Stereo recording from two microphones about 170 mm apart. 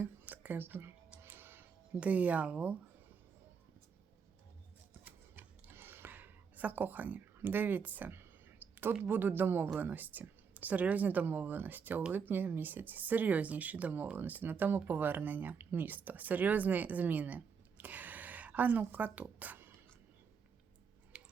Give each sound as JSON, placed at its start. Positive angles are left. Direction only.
{"t": 0.0, "sound": "music", "side_deg": -10}
{"t": 5.0, "sound": "speech", "side_deg": -10}
{"t": 21.1, "sound": "tick-tock", "side_deg": -5}